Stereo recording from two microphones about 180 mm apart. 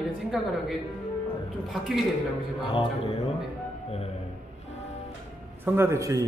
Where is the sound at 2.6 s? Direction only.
30° left (ahead or behind).